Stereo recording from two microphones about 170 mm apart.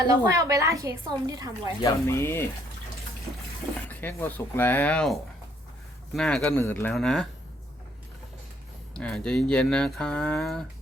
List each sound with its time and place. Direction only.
0.1 s a woman's voice: 20° right (ahead or behind)
1.8 s speech: 20° left (ahead or behind)
3.8 s speech: 10° left (ahead or behind)
6.9 s speech: centre (ahead or behind)
9.0 s speech: 5° left (ahead or behind)